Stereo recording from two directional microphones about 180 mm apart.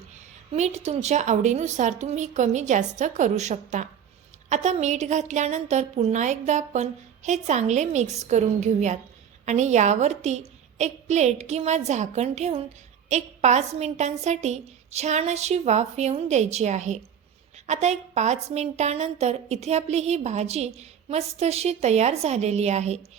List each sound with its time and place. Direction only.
0.5 s a woman's voice: 40° right (ahead or behind)